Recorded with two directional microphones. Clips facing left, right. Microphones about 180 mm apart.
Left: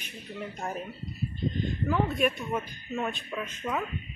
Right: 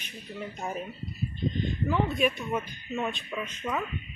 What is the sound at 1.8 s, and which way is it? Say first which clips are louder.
A woman's voice: even; centre (ahead or behind).